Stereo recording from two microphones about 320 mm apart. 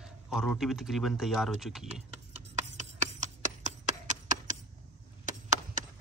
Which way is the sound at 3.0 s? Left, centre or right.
Right.